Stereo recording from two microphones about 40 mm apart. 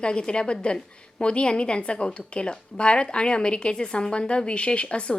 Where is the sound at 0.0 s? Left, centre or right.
Left.